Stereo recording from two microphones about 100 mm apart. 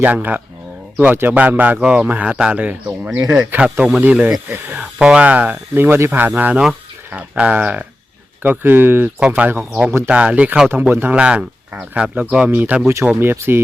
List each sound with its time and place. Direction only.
0.0 s speech: 15° right (ahead or behind)
9.2 s speech: 10° right (ahead or behind)